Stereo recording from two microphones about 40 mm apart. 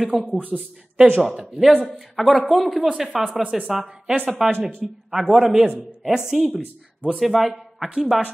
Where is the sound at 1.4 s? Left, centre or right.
Centre.